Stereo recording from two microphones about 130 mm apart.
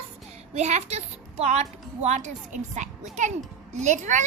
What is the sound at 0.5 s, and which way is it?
A woman's voice, 60° right (ahead or behind).